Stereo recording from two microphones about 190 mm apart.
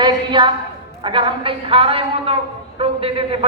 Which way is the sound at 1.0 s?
25° right (ahead or behind).